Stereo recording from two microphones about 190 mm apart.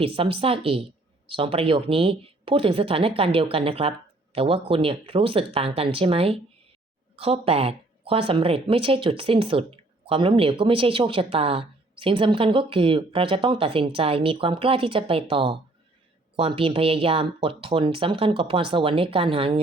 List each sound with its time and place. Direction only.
0.0 s speech: 30° right (ahead or behind)